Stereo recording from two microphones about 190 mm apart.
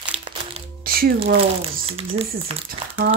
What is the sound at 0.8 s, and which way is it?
Music, 50° right (ahead or behind).